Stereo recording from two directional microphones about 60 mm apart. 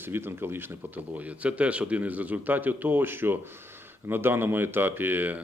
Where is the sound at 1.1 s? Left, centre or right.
Right.